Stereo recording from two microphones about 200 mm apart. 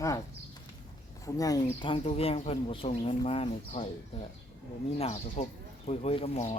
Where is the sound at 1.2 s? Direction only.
15° left (ahead or behind).